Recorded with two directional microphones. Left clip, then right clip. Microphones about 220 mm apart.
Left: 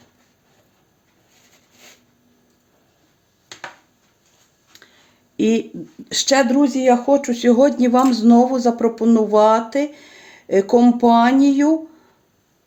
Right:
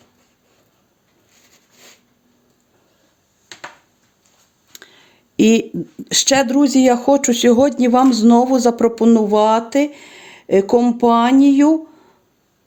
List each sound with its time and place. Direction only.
4.7 s a sound: 50° right (ahead or behind)
5.4 s speech: 50° right (ahead or behind)
6.1 s speech: 35° right (ahead or behind)